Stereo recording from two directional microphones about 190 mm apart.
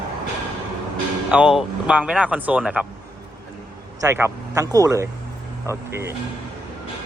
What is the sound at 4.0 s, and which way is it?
Speech, 10° right (ahead or behind).